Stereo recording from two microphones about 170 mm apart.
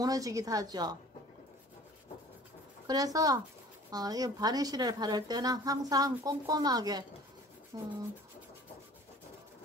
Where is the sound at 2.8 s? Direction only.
20° right (ahead or behind).